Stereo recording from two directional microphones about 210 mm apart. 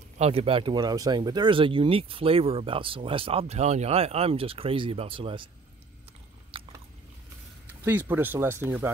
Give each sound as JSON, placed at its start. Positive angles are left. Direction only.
{"t": 0.2, "sound": "speech", "side_deg": -30}
{"t": 6.5, "sound": "biting", "side_deg": -25}
{"t": 7.8, "sound": "speech", "side_deg": -10}